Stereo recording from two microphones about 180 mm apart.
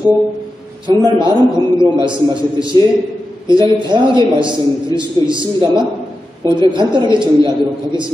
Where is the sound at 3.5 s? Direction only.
25° right (ahead or behind).